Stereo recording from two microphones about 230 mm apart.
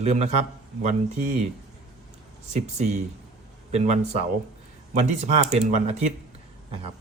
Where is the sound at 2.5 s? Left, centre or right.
Right.